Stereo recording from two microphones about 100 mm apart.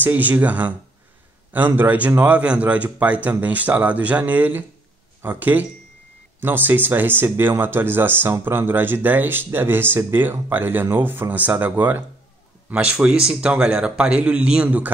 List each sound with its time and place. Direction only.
0.0 s a man's voice: 15° right (ahead or behind)